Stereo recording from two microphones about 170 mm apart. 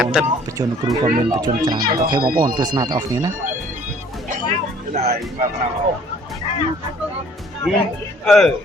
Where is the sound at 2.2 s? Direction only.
60° right (ahead or behind).